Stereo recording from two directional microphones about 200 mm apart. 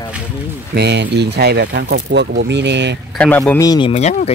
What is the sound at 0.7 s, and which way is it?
Speech, 60° right (ahead or behind).